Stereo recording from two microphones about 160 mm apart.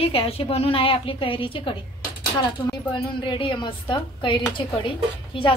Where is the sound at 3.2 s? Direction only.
30° left (ahead or behind).